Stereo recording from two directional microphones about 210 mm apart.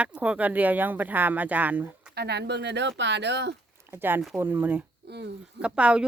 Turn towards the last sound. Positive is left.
turn(degrees=-5)  # may be behind; listen again after turning